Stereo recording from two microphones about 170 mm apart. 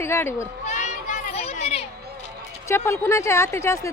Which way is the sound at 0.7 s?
45° left (ahead or behind).